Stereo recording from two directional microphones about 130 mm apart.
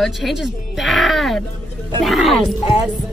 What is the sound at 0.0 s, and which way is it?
Speech, centre (ahead or behind).